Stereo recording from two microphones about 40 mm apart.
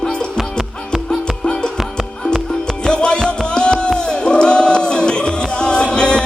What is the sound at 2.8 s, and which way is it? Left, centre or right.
Music, left.